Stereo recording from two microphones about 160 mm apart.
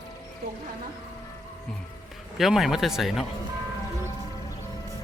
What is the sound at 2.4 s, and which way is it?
Speech, centre (ahead or behind).